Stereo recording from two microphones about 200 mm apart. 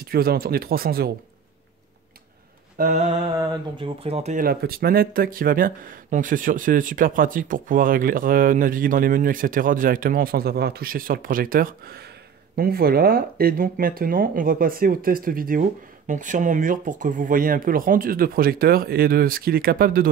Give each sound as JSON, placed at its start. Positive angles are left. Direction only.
{"t": 0.0, "sound": "speech", "side_deg": -50}
{"t": 3.1, "sound": "speech", "side_deg": -20}